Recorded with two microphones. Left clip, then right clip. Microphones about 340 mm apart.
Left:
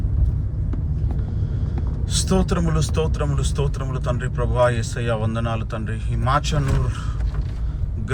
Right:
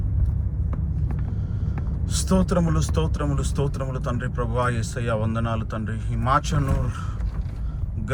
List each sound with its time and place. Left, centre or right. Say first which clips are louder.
2.0 s speech: left 2 dB; centre